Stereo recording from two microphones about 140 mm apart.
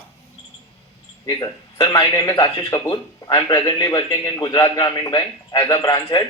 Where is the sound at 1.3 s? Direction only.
35° left (ahead or behind).